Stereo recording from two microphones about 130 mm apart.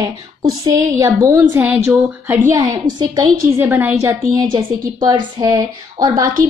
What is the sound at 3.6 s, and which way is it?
Speech, 15° right (ahead or behind).